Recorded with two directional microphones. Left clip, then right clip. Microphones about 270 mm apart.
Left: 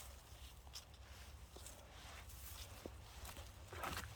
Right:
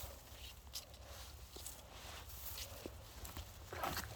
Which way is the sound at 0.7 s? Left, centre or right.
Right.